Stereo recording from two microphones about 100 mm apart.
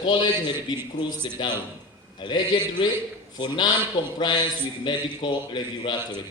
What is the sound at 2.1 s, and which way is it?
A man's voice, 50° left (ahead or behind).